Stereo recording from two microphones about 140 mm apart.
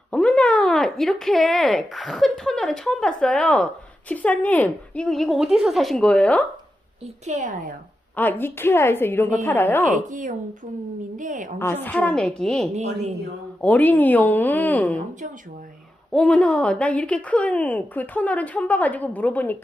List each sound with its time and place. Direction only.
0.1 s a woman's voice: 5° left (ahead or behind)
7.3 s a woman's voice: 65° right (ahead or behind)
8.1 s speech: 15° left (ahead or behind)
9.9 s a woman's voice: 65° right (ahead or behind)
11.6 s speech: 15° left (ahead or behind)
12.7 s speech: 55° right (ahead or behind)
13.6 s speech: 10° left (ahead or behind)
16.1 s speech: 5° left (ahead or behind)